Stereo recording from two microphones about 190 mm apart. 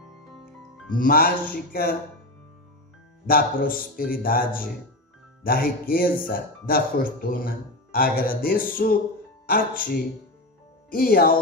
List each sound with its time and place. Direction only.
0.9 s speech: 50° left (ahead or behind)
3.3 s speech: 50° left (ahead or behind)